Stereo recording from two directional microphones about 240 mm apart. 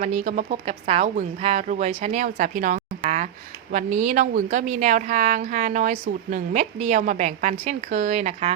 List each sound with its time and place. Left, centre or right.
0.0 s a woman's voice: right